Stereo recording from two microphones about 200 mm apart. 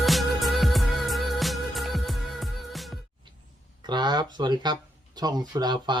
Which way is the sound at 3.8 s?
20° right (ahead or behind).